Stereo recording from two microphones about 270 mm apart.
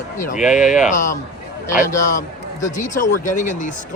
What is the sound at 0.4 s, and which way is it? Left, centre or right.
Speech, centre.